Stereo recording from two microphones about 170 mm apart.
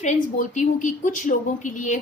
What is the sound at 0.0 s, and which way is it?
Speech, 45° left (ahead or behind).